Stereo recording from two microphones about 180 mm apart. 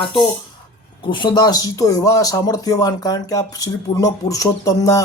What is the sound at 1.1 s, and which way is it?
Speech, 25° left (ahead or behind).